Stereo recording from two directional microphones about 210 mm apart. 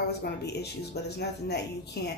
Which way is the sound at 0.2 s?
50° left (ahead or behind).